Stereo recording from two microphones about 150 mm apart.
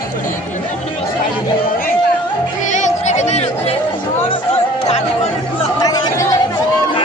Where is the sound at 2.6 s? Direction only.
55° left (ahead or behind).